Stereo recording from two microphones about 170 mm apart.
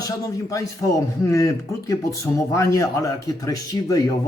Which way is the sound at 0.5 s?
20° left (ahead or behind).